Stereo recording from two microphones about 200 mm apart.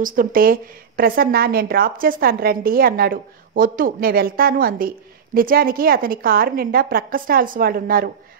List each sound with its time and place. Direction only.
0.0 s a woman's voice: 45° right (ahead or behind)